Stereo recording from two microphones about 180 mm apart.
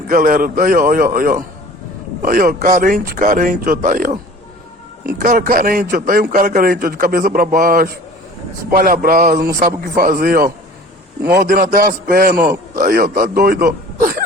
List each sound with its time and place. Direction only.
0.1 s a man's voice: 50° right (ahead or behind)